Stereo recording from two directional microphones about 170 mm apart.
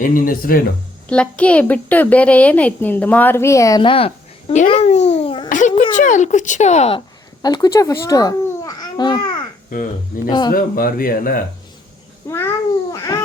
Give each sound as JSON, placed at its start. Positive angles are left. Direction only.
{"t": 0.0, "sound": "speech", "side_deg": 55}
{"t": 1.0, "sound": "a woman's voice", "side_deg": 5}
{"t": 4.7, "sound": "babbling", "side_deg": 40}
{"t": 5.5, "sound": "a sound", "side_deg": 45}
{"t": 5.9, "sound": "speech", "side_deg": 45}
{"t": 7.4, "sound": "a child's voice", "side_deg": 25}
{"t": 10.2, "sound": "speech", "side_deg": 25}
{"t": 10.5, "sound": "speech", "side_deg": 60}
{"t": 12.2, "sound": "cat", "side_deg": 15}
{"t": 12.9, "sound": "babbling", "side_deg": 20}